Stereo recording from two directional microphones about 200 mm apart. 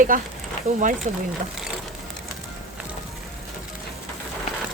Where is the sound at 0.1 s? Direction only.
45° right (ahead or behind).